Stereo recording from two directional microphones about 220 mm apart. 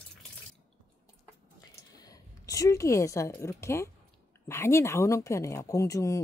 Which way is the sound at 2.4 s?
15° left (ahead or behind).